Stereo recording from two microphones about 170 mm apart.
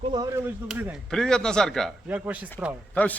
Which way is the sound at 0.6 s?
5° right (ahead or behind).